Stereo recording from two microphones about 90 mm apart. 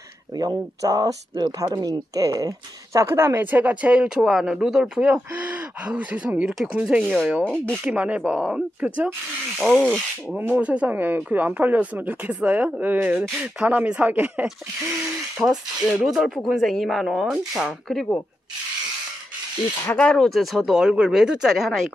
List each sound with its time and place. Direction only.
0.4 s speech: 45° right (ahead or behind); by 4.2 s 15° right (ahead or behind)
4.2 s speech: centre (ahead or behind)
5.1 s speech: 15° right (ahead or behind)
7.4 s speech: 10° left (ahead or behind)
7.8 s speech: 15° right (ahead or behind)
9.6 s speech: 5° left (ahead or behind)
10.5 s speech: 15° right (ahead or behind)
15.3 s speech: 5° right (ahead or behind)
20.0 s speech: 5° left (ahead or behind)